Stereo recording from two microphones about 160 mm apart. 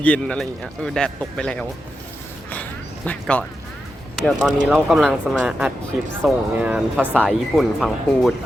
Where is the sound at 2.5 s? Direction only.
10° left (ahead or behind).